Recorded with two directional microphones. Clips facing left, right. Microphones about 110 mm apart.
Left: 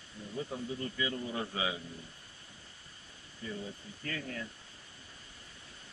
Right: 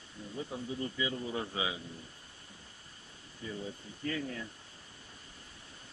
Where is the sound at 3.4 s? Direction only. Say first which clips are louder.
Even; 20° right (ahead or behind).